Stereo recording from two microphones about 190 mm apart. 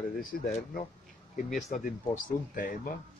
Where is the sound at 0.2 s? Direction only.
45° left (ahead or behind).